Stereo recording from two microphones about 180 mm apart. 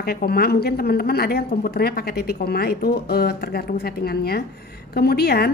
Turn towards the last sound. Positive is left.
turn(degrees=60)  # may be behind; listen again after turning